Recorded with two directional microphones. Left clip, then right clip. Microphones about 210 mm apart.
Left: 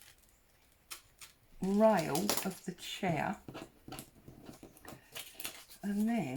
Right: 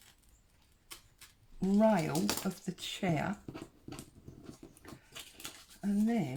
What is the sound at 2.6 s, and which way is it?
Speech, 50° right (ahead or behind).